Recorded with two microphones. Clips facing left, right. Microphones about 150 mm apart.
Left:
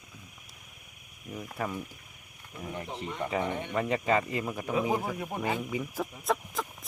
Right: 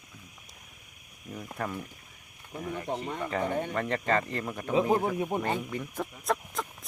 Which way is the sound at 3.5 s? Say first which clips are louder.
Right 4 dB; 45° right (ahead or behind).